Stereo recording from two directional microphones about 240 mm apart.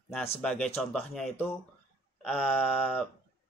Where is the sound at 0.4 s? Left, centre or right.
Centre.